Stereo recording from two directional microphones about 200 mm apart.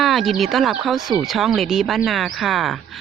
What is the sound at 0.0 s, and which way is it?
Speech, centre (ahead or behind).